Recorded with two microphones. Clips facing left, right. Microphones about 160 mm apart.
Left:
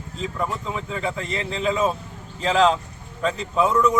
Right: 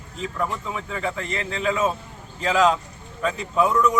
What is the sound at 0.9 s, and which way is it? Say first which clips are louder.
A man's voice: even; 30° left (ahead or behind).